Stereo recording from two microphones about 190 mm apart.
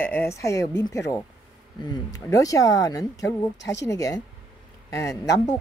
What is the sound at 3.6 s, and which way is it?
Speech, 70° left (ahead or behind).